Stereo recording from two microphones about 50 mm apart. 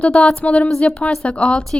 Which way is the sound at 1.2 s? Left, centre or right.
Centre.